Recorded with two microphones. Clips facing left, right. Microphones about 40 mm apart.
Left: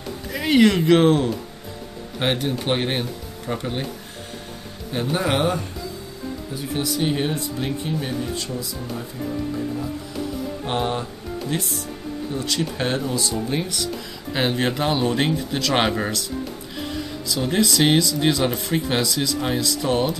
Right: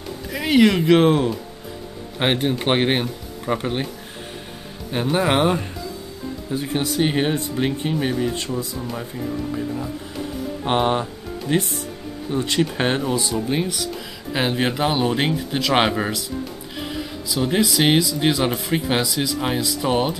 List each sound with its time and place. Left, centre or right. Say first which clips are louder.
0.3 s speech: right 1 dB; centre
2.1 s speech: right 2 dB; right
4.9 s speech: right 3 dB; right
6.5 s speech: right 3 dB; right
10.6 s speech: right 6 dB; right
13.3 s speech: right 2 dB; centre